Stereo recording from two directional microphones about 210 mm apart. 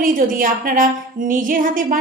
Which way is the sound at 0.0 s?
40° right (ahead or behind).